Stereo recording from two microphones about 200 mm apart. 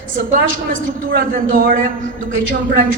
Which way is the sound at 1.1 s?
45° right (ahead or behind).